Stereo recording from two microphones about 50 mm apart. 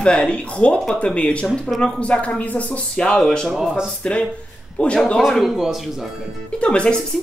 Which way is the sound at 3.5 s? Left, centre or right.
Centre.